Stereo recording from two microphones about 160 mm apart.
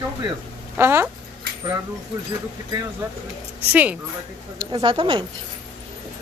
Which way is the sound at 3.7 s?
10° right (ahead or behind).